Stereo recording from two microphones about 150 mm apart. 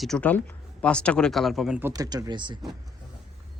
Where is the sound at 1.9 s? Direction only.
25° right (ahead or behind).